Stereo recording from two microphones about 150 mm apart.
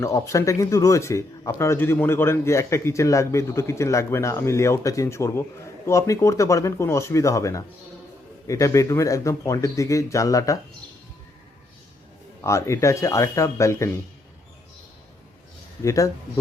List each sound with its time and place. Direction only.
0.0 s speech: 20° left (ahead or behind)
12.4 s speech: 20° left (ahead or behind)
15.8 s speech: 20° left (ahead or behind)